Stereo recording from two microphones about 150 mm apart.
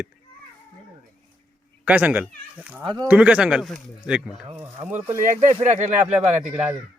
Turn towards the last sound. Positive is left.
turn(degrees=-10)  # may be behind; listen again after turning